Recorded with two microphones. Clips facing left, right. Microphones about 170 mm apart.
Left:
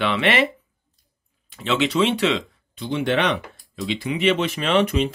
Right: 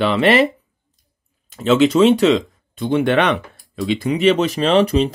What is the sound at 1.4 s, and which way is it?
Speech, 40° right (ahead or behind).